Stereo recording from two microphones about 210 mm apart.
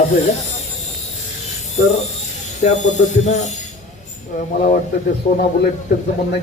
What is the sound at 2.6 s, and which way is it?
Speech, 35° left (ahead or behind).